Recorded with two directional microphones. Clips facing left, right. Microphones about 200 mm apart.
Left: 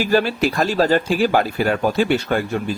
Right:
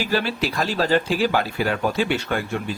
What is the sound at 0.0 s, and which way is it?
Speech, 45° left (ahead or behind).